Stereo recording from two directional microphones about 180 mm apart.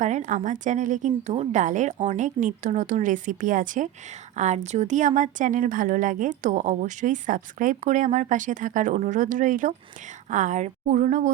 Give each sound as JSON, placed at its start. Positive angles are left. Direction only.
{"t": 0.0, "sound": "speech", "side_deg": -40}